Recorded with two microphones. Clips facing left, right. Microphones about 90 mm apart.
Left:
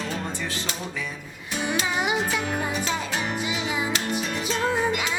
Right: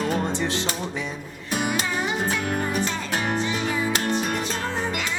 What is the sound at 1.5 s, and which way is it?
Music, 55° right (ahead or behind).